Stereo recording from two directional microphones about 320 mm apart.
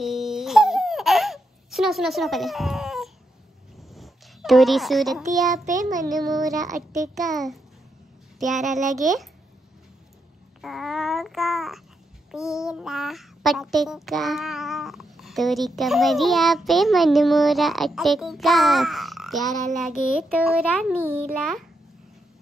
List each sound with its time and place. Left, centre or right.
0.0 s baby laughter: centre
3.9 s a child's voice: centre
5.8 s child singing: right
6.1 s a child's voice: centre
10.6 s babbling: centre
12.3 s a child's voice: centre